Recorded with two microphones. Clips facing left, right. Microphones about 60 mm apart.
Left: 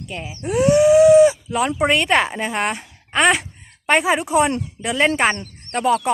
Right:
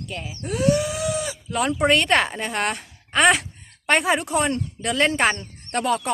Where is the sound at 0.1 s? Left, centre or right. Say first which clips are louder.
Left 7 dB; centre.